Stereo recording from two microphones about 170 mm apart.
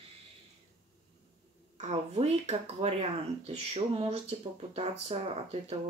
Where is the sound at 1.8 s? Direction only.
40° right (ahead or behind).